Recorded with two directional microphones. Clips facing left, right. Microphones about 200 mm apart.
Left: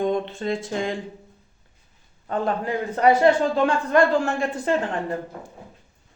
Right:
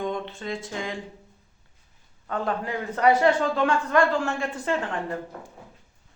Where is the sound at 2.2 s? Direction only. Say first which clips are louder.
Left 3 dB; 30° left (ahead or behind).